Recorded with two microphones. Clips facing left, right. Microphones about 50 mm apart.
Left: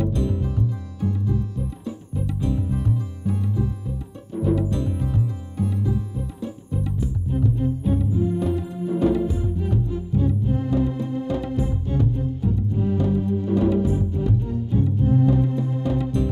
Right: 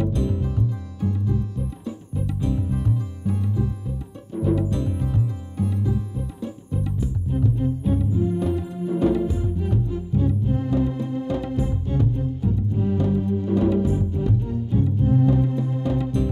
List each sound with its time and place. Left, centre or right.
0.1 s music: right